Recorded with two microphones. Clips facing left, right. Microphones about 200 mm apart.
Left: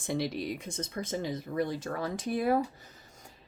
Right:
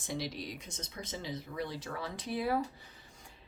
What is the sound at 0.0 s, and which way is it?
A woman's voice, 55° left (ahead or behind).